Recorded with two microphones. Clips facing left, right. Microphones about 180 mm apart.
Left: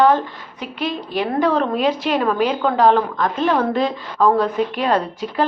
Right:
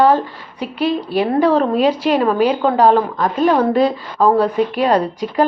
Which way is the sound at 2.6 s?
10° right (ahead or behind).